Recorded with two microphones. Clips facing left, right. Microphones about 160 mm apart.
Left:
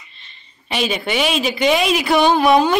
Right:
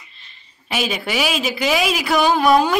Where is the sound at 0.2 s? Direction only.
5° right (ahead or behind).